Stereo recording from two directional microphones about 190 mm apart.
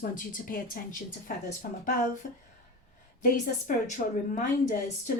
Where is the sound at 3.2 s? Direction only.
45° left (ahead or behind).